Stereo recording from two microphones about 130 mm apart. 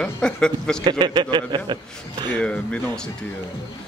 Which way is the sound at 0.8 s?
35° right (ahead or behind).